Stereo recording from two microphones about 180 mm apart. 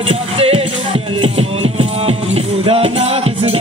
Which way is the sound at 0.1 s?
35° right (ahead or behind).